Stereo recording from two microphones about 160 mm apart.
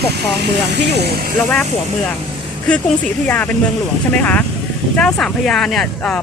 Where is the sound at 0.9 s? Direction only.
90° right.